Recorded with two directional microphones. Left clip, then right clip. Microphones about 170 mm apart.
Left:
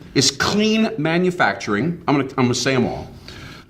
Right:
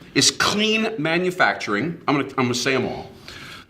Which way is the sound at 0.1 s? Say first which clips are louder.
Even; 25° right (ahead or behind).